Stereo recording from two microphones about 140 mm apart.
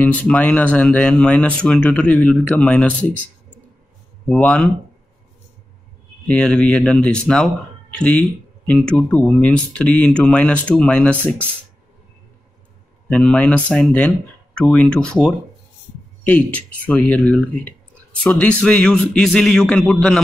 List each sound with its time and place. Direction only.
0.0 s speech: 10° left (ahead or behind)
4.3 s speech: 5° left (ahead or behind)
6.2 s speech: 10° left (ahead or behind)
13.1 s speech: 5° left (ahead or behind)